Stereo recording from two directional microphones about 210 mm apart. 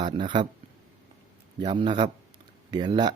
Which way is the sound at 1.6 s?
25° right (ahead or behind).